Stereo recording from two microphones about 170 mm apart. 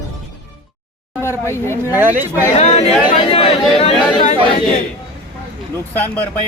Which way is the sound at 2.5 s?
40° left (ahead or behind).